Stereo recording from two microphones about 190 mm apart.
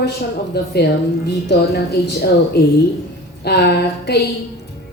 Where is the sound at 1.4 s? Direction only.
60° left (ahead or behind).